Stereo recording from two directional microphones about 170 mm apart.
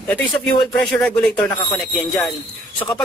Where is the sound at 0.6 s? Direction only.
5° left (ahead or behind).